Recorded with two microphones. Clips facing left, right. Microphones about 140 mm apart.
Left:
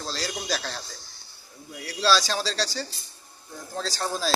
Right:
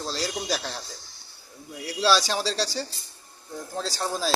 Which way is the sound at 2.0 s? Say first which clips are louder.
Right 1 dB; 20° right (ahead or behind).